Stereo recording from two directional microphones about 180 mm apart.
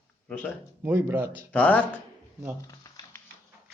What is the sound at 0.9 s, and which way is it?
Speech, 10° right (ahead or behind).